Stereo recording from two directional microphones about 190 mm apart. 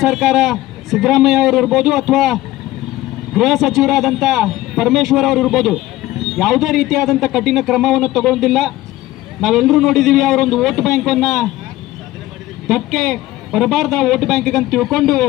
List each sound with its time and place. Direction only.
0.0 s a man's voice: centre (ahead or behind)
12.6 s a man's voice: centre (ahead or behind)